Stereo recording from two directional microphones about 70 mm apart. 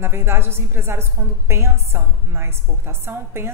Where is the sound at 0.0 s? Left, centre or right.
Right.